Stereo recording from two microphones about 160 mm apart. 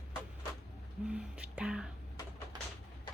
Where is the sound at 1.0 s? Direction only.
5° right (ahead or behind).